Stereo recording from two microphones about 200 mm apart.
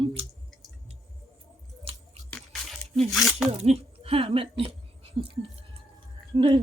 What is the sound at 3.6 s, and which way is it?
A woman's voice, 30° right (ahead or behind).